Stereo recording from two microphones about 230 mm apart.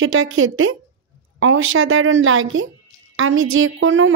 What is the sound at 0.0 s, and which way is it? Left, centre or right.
A woman's voice, right.